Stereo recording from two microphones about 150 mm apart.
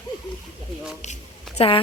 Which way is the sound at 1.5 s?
40° left (ahead or behind).